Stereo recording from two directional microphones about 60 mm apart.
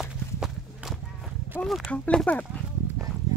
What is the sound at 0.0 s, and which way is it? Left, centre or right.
Walk, centre.